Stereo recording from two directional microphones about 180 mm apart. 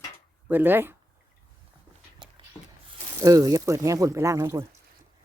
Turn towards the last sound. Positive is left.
turn(degrees=-15)  # may be behind; listen again after turning